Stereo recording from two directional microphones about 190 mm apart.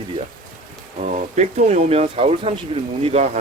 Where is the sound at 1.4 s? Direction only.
35° right (ahead or behind).